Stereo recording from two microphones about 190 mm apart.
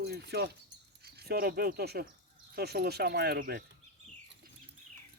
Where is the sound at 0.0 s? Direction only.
60° right (ahead or behind).